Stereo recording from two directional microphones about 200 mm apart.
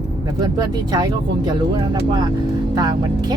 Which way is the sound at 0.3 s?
20° right (ahead or behind).